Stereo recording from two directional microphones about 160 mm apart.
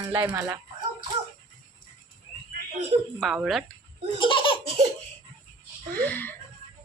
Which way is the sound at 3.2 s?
Centre (ahead or behind).